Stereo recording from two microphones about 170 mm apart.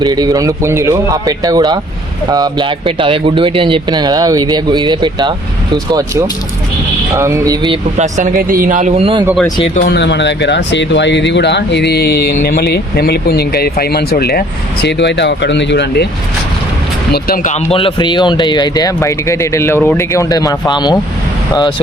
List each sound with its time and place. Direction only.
0.0 s speech: 25° right (ahead or behind)
7.9 s a man's voice: 45° right (ahead or behind)
9.0 s speech: 35° right (ahead or behind)
9.7 s speech: 70° left (ahead or behind); by 16.0 s 90° left
17.1 s speech: 60° left (ahead or behind); by 21.0 s 25° left (ahead or behind)